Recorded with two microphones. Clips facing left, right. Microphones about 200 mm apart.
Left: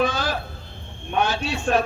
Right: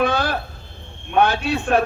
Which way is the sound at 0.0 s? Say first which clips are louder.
Right 3 dB; 60° right (ahead or behind).